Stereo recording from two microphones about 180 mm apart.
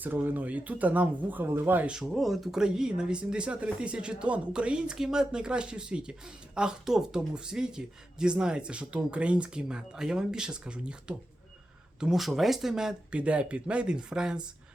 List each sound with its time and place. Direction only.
0.0 s speech: 10° right (ahead or behind)
11.9 s speech: 5° right (ahead or behind)